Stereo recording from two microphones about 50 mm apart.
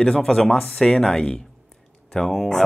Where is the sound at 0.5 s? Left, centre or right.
Centre.